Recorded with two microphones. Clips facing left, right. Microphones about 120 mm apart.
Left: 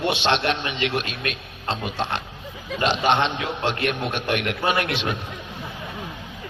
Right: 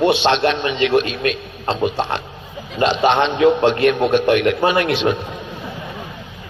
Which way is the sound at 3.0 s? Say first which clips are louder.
Right 9 dB; 35° right (ahead or behind).